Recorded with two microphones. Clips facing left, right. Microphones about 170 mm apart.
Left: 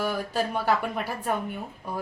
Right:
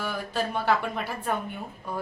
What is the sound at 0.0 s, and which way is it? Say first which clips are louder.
Speech: left 3 dB; 10° left (ahead or behind).